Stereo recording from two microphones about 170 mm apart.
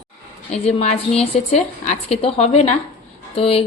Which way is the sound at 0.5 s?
40° left (ahead or behind).